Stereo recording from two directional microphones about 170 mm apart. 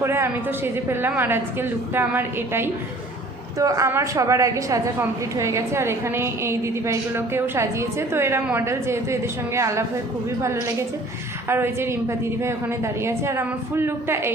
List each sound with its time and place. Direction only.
0.0 s a woman's voice: 15° right (ahead or behind)